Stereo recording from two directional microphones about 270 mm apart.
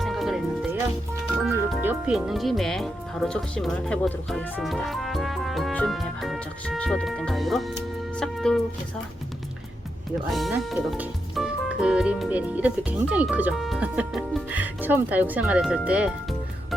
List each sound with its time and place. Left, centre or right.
0.0 s music: centre
1.5 s speech: centre
10.3 s speech: centre